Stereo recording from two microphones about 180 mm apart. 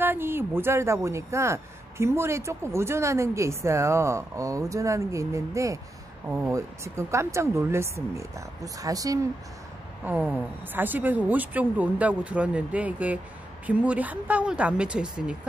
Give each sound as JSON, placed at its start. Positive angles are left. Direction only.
{"t": 0.0, "sound": "speech", "side_deg": -10}
{"t": 10.0, "sound": "speech", "side_deg": -10}